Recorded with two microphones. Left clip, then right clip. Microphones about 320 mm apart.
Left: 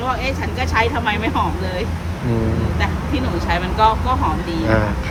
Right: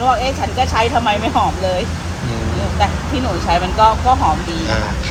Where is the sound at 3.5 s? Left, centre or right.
Centre.